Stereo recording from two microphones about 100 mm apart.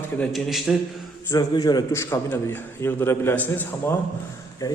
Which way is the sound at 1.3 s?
40° left (ahead or behind).